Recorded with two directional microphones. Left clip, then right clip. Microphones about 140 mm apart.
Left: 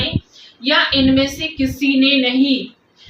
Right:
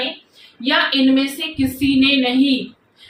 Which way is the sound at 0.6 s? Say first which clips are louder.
Left 1 dB; 15° right (ahead or behind).